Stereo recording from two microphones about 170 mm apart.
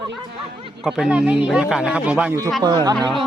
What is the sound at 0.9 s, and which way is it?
Speech, 5° right (ahead or behind).